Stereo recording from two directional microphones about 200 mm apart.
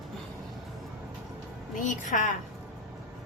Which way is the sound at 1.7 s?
40° left (ahead or behind).